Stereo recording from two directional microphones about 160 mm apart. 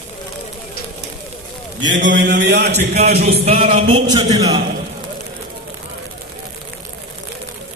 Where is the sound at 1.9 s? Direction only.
55° right (ahead or behind).